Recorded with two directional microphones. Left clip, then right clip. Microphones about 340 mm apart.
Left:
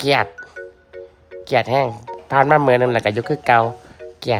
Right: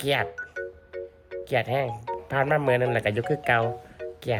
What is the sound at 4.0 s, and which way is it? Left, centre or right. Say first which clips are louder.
Music: even; centre.